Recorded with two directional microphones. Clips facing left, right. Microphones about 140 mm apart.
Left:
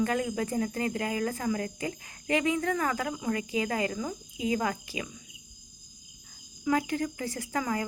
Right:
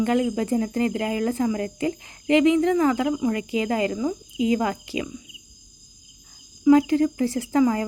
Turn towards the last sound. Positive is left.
turn(degrees=-30)  # may be behind; listen again after turning